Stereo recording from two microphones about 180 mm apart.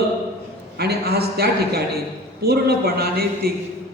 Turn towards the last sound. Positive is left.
turn(degrees=-60)  # may be behind; listen again after turning